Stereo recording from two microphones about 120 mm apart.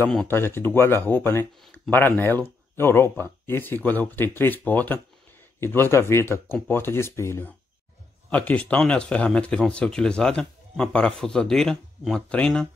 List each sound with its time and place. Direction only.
0.3 s speech: 20° left (ahead or behind)